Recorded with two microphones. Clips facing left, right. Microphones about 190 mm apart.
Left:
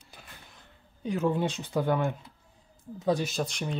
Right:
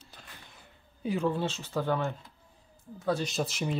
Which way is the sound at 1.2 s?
15° left (ahead or behind).